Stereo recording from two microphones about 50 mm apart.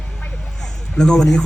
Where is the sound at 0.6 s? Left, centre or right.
Centre.